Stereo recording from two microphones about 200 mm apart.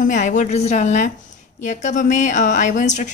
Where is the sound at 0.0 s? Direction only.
40° left (ahead or behind).